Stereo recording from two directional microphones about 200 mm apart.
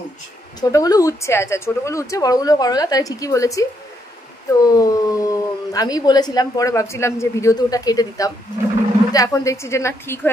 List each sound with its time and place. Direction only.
0.6 s speech: 15° left (ahead or behind)